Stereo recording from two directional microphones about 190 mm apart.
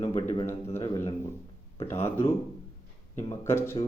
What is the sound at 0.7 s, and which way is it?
Speech, 15° left (ahead or behind).